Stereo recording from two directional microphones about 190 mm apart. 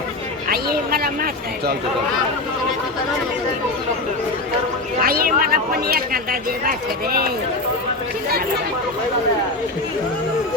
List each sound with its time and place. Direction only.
0.4 s speech: 50° right (ahead or behind)
4.9 s speech: 50° right (ahead or behind)